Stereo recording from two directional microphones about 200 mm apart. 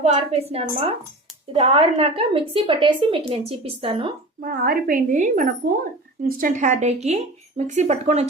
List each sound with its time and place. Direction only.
0.0 s a woman's voice: 30° right (ahead or behind)
4.4 s a woman's voice: 45° right (ahead or behind)